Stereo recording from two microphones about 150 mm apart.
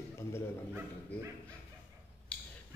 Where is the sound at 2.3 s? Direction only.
10° left (ahead or behind).